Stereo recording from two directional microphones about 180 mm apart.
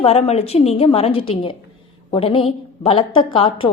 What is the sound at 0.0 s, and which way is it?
A woman's voice, 35° left (ahead or behind).